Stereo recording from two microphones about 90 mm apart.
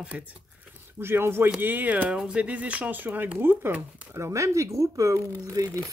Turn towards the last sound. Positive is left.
turn(degrees=-40)  # may be behind; listen again after turning